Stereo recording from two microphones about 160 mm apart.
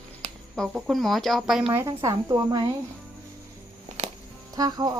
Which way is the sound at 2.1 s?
20° right (ahead or behind).